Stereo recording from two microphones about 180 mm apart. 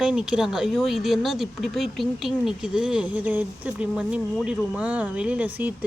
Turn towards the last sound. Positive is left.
turn(degrees=-10)  # may be behind; listen again after turning